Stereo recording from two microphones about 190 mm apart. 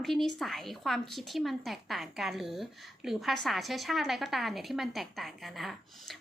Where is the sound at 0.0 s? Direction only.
Centre (ahead or behind).